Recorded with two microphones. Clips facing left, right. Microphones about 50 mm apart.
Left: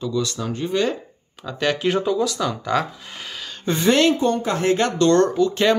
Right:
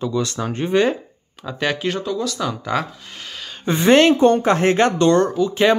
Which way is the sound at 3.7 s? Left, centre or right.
Right.